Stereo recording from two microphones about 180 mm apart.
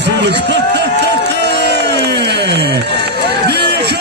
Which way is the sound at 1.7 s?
70° right (ahead or behind).